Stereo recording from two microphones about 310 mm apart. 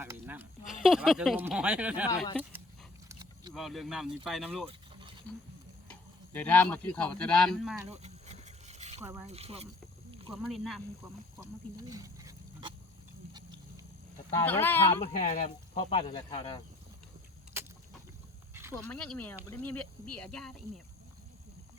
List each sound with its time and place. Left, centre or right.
0.0 s a sound: centre
2.0 s speech: centre
3.5 s speech: centre
7.9 s a sound: centre
9.2 s speech: centre
10.3 s speech: centre
11.9 s wild animals: centre
14.4 s speech: centre
15.0 s speech: left
17.5 s vehicle: centre
18.7 s speech: centre